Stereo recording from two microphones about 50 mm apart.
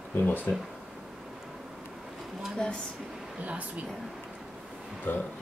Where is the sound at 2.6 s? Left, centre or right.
Centre.